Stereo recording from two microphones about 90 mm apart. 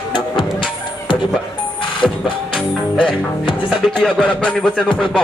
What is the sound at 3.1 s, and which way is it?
Music, 65° left (ahead or behind).